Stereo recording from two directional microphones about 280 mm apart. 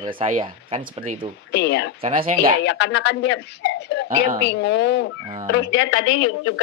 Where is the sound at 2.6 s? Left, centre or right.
Left.